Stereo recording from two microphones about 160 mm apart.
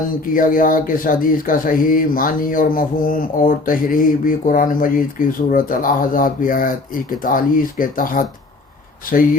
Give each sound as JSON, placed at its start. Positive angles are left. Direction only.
{"t": 0.3, "sound": "speech", "side_deg": 60}